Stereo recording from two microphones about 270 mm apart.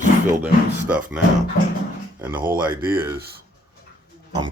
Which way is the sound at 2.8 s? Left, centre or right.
Centre.